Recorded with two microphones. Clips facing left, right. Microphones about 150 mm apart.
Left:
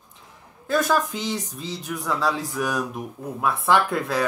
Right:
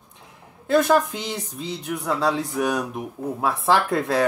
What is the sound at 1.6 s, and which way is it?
Speech, 25° right (ahead or behind).